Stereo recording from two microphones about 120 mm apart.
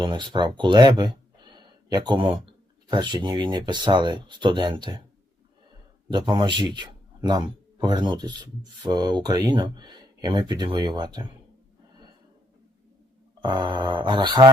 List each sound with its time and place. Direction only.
0.0 s speech: 40° right (ahead or behind)
6.1 s speech: 40° right (ahead or behind)
13.4 s speech: 40° right (ahead or behind)